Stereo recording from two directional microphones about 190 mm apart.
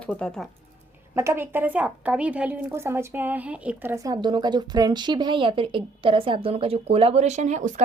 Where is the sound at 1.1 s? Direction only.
15° right (ahead or behind).